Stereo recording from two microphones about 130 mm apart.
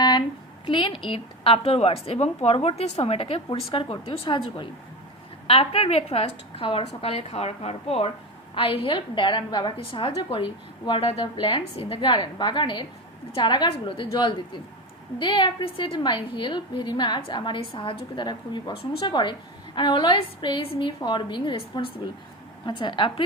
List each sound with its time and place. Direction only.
0.0 s a woman's voice: 35° left (ahead or behind)